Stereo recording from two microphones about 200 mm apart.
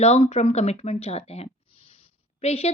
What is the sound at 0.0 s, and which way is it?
Speech, 35° left (ahead or behind).